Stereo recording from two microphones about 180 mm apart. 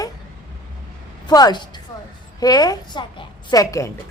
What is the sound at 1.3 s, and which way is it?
A woman's voice, 20° left (ahead or behind).